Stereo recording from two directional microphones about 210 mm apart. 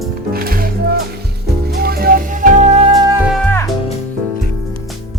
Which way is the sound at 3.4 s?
10° left (ahead or behind).